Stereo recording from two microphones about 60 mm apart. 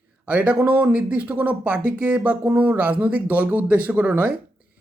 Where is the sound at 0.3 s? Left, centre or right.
Right.